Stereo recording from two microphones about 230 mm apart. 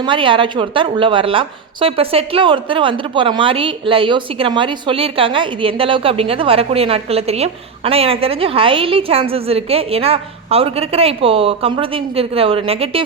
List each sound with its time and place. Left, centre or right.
0.0 s a woman's voice: right